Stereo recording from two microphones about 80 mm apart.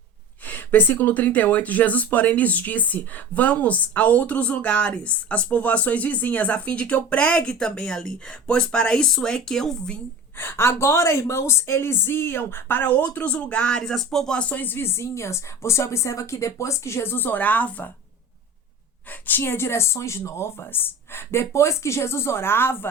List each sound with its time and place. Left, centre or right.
0.4 s speech: left
10.3 s speech: left
19.3 s speech: left